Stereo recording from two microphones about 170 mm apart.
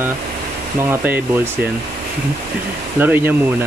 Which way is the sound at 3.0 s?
10° right (ahead or behind).